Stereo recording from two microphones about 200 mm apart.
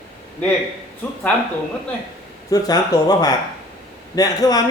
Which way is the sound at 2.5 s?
20° left (ahead or behind).